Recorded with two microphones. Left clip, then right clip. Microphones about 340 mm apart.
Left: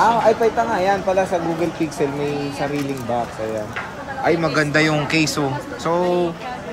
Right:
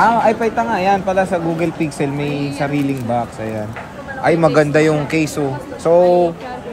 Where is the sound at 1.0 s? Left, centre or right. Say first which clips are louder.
Right 2 dB; right.